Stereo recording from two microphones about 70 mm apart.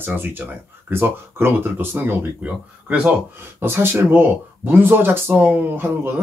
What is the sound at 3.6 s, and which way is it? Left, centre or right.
Speech, right.